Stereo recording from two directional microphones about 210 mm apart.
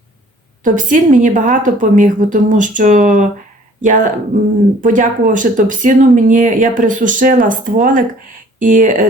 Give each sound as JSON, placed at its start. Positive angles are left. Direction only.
{"t": 0.6, "sound": "speech", "side_deg": -40}